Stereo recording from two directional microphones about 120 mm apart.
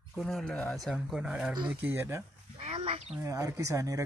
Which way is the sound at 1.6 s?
15° right (ahead or behind).